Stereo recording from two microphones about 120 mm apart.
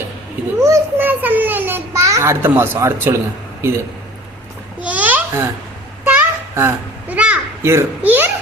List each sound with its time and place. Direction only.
0.6 s a child's voice: 20° right (ahead or behind)
4.8 s babbling: 10° right (ahead or behind)
6.1 s children playing: 20° right (ahead or behind)
7.6 s a child's voice: 20° right (ahead or behind)